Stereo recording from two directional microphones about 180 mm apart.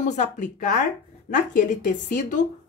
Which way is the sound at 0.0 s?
40° left (ahead or behind).